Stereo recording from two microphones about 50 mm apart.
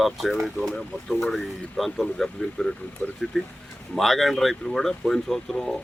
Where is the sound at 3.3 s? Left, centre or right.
Centre.